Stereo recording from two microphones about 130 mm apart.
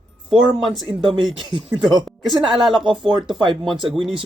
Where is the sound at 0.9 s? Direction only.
35° right (ahead or behind).